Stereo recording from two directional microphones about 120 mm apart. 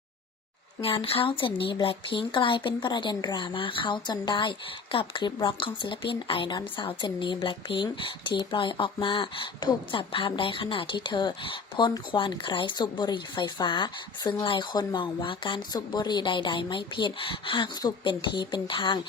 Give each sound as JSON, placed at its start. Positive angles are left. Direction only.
{"t": 0.8, "sound": "speech", "side_deg": 50}